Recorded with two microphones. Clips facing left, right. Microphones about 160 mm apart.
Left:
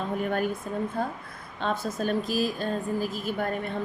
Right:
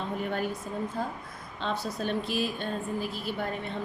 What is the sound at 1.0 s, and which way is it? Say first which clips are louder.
A woman's voice: left 3 dB; 60° left (ahead or behind).